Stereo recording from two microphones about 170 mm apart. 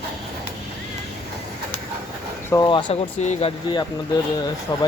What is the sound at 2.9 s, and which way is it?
Speech, 40° left (ahead or behind).